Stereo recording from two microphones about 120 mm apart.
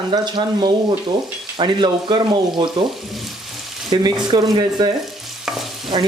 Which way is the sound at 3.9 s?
40° right (ahead or behind).